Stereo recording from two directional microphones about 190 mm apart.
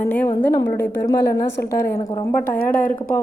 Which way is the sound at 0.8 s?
65° left (ahead or behind).